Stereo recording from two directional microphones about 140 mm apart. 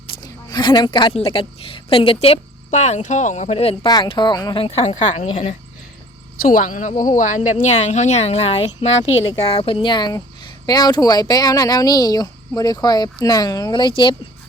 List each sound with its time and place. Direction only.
0.2 s a sound: 30° left (ahead or behind)
1.1 s a woman's voice: 40° left (ahead or behind)
3.8 s a woman's voice: 30° left (ahead or behind); by 5.5 s 50° left (ahead or behind)
6.4 s a woman's voice: 70° left (ahead or behind); by 14.2 s 35° left (ahead or behind)